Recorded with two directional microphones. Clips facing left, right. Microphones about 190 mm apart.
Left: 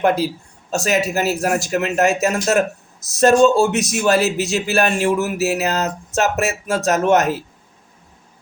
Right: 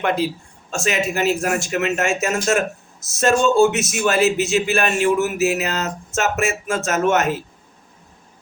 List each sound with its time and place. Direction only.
0.0 s speech: 40° left (ahead or behind)